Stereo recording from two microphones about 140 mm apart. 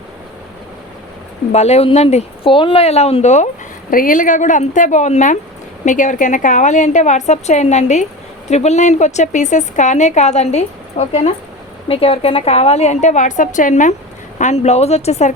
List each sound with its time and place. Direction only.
1.5 s a woman's voice: 50° left (ahead or behind)
2.5 s a woman's voice: 35° left (ahead or behind); by 3.5 s 55° left (ahead or behind)
3.9 s a woman's voice: 75° left (ahead or behind); by 15.4 s 55° left (ahead or behind)